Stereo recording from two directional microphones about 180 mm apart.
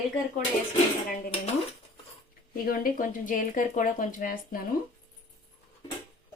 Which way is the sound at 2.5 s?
55° left (ahead or behind).